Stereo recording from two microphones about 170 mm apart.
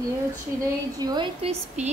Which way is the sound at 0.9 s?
25° right (ahead or behind).